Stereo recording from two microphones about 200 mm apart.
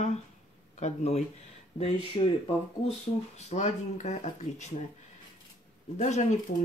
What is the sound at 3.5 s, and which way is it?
Speech, 35° left (ahead or behind).